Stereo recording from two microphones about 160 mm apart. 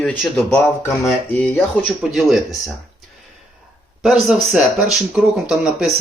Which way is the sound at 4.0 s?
Centre (ahead or behind).